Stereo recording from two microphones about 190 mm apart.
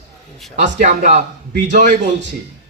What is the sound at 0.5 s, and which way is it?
A man's voice, 40° right (ahead or behind).